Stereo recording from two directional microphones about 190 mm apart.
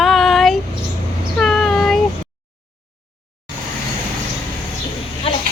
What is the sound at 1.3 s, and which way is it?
Child singing, centre (ahead or behind).